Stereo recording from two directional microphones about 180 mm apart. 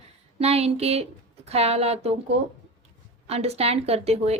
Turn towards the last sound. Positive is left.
turn(degrees=-35)  # may be behind; listen again after turning